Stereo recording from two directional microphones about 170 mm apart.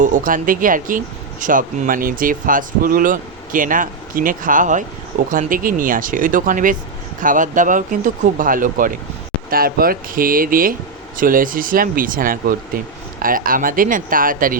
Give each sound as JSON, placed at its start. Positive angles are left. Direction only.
{"t": 0.0, "sound": "speech", "side_deg": -50}